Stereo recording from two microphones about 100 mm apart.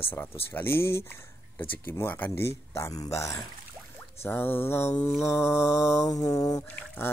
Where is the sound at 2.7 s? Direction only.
30° left (ahead or behind).